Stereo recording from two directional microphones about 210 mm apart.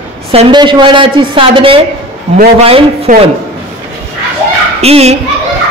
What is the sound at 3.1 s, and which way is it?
Speech, 35° right (ahead or behind).